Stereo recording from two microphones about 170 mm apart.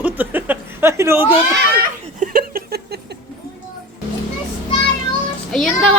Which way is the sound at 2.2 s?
60° right (ahead or behind).